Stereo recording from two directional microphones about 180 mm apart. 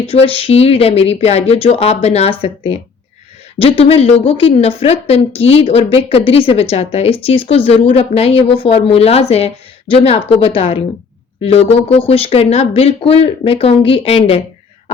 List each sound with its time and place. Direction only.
0.0 s a woman's voice: 30° left (ahead or behind)
3.6 s a woman's voice: 30° left (ahead or behind)